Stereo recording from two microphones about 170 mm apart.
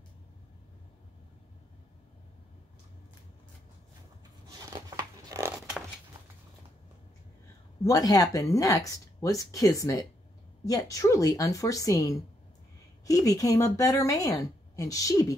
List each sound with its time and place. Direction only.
4.5 s tearing: 20° right (ahead or behind)
7.8 s speech: 20° left (ahead or behind)